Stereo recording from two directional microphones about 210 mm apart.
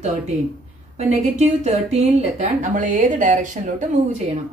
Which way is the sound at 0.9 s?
30° right (ahead or behind).